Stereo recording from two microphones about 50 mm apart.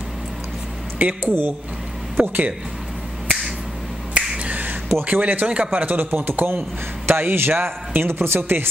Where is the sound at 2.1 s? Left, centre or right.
Right.